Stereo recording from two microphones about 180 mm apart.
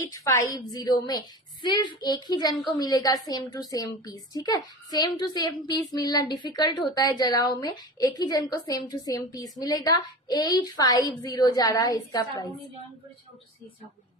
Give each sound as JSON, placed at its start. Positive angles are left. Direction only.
{"t": 0.0, "sound": "a woman's voice", "side_deg": 15}